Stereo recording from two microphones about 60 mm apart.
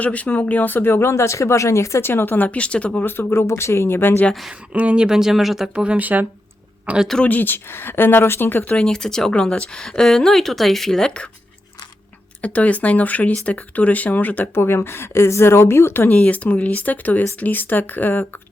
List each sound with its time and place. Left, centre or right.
0.0 s speech: left
2.0 s speech: left; by 2.9 s centre
2.9 s speech: left
4.7 s speech: right; by 5.7 s centre
5.7 s speech: centre
7.3 s speech: left
8.7 s speech: centre
12.4 s speech: left